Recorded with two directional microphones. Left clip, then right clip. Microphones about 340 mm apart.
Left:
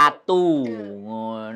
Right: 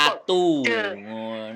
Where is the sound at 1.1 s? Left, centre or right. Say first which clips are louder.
Left 2 dB; centre.